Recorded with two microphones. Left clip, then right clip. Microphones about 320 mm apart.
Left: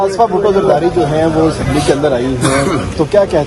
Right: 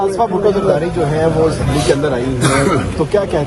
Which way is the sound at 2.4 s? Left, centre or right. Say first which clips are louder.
Left 1 dB; centre.